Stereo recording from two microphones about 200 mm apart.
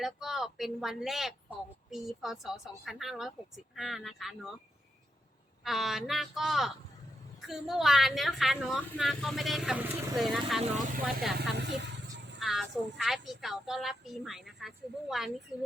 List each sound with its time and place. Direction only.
0.0 s speech: centre (ahead or behind)
5.6 s speech: centre (ahead or behind)
11.3 s vehicle: 60° right (ahead or behind)
12.4 s speech: centre (ahead or behind)